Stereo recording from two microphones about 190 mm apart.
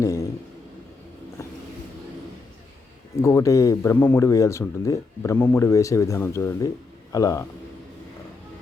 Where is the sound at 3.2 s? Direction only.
15° left (ahead or behind).